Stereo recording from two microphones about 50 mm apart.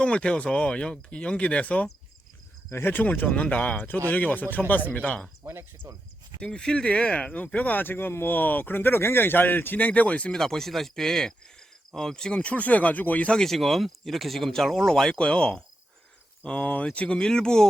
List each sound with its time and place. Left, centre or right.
0.0 s speech: left
2.8 s speech: left
3.1 s speech: left
5.4 s speech: right
6.4 s speech: centre
10.3 s speech: centre; by 13.2 s left
13.2 s speech: centre